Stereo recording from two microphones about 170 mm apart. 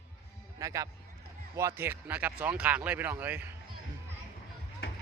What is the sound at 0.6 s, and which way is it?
Speech, 20° right (ahead or behind).